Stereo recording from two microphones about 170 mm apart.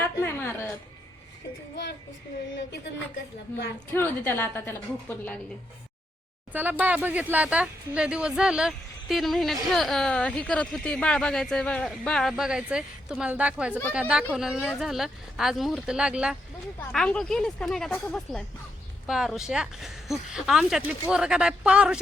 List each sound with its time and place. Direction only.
0.0 s a sound: 15° left (ahead or behind)
3.9 s a woman's voice: 10° left (ahead or behind)
6.5 s speech: 10° right (ahead or behind)